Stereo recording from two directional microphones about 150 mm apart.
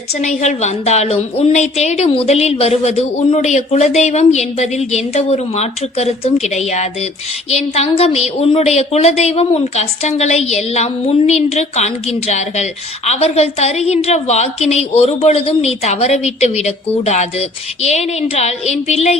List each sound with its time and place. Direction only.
0.2 s a woman's voice: 50° left (ahead or behind)
13.1 s a woman's voice: 45° left (ahead or behind)